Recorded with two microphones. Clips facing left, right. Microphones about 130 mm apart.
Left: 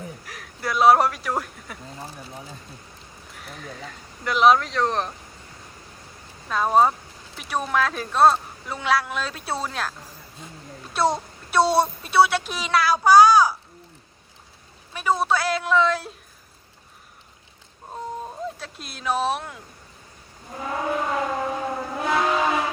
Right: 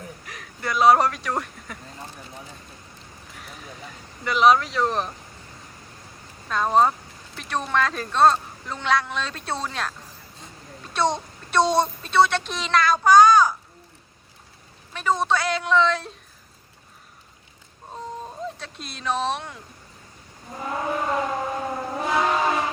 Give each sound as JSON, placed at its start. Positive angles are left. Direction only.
{"t": 0.3, "sound": "speech", "side_deg": 0}
{"t": 3.3, "sound": "speech", "side_deg": 0}
{"t": 6.5, "sound": "a woman's voice", "side_deg": 5}
{"t": 14.9, "sound": "speech", "side_deg": 5}
{"t": 17.9, "sound": "a sound", "side_deg": 5}
{"t": 20.7, "sound": "civil defense siren", "side_deg": 0}